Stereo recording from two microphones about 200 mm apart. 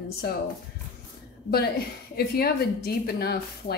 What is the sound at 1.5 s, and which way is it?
A woman's voice, 50° left (ahead or behind).